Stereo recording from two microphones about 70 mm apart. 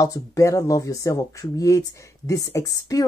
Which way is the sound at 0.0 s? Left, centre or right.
Left.